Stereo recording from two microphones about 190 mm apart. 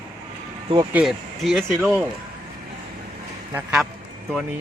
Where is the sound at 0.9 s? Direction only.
Centre (ahead or behind).